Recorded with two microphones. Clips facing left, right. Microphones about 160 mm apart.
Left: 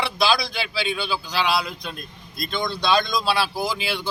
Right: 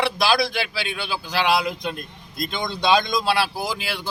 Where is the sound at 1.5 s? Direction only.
15° right (ahead or behind).